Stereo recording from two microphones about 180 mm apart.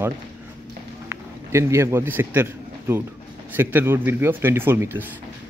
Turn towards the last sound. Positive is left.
turn(degrees=-10)  # may be behind; listen again after turning